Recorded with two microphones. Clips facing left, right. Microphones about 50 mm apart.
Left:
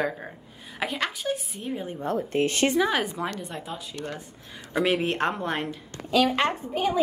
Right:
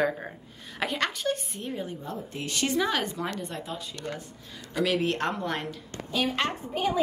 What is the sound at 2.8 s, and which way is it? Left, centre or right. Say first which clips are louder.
Speech: left 3 dB; centre.